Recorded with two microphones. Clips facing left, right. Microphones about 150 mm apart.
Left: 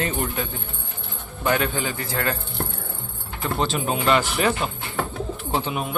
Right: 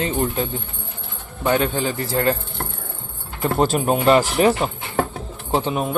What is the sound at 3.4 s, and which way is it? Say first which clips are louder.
Speech: right 6 dB; 45° right (ahead or behind).